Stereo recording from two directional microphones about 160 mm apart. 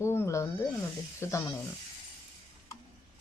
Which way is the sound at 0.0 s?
15° left (ahead or behind).